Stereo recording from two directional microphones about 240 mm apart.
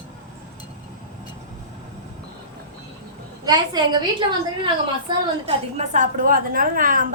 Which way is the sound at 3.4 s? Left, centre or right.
Centre.